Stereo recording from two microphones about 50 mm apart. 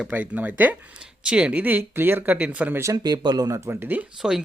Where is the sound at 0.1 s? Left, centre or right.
Right.